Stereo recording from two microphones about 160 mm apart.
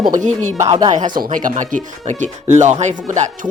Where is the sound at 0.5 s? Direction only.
20° right (ahead or behind).